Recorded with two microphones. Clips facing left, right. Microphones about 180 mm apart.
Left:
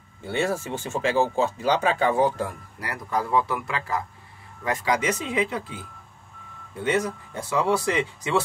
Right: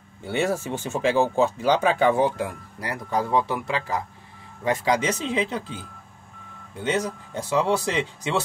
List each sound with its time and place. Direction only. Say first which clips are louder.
0.3 s speech: right 1 dB; 20° right (ahead or behind)
6.8 s speech: left 1 dB; 20° right (ahead or behind)